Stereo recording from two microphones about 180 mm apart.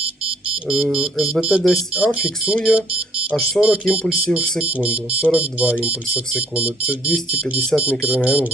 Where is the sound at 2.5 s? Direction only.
5° right (ahead or behind).